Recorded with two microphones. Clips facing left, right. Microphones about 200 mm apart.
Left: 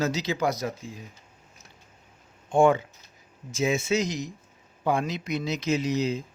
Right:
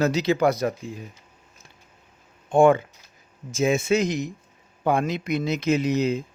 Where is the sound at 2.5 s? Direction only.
55° right (ahead or behind).